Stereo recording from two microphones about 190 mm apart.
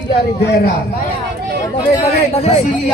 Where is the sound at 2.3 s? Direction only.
35° left (ahead or behind).